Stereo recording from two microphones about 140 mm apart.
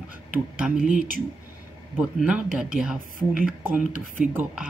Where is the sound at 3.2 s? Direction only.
5° left (ahead or behind).